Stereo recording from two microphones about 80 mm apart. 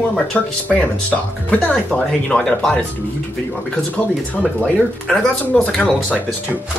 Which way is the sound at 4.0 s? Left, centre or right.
Centre.